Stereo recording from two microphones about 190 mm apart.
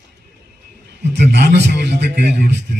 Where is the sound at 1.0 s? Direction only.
60° right (ahead or behind).